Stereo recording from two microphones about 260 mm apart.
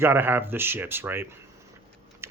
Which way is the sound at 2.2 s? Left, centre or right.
Centre.